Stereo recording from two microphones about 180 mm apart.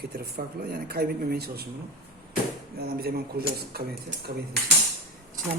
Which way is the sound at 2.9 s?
60° right (ahead or behind).